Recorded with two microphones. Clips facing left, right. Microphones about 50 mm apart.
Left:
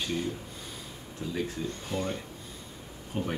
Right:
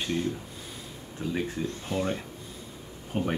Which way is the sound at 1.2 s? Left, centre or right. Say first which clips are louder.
Right 4 dB; right.